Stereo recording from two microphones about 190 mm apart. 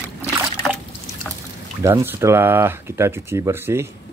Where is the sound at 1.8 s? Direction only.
15° right (ahead or behind).